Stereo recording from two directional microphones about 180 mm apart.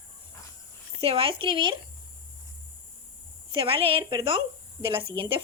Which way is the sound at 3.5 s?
30° right (ahead or behind).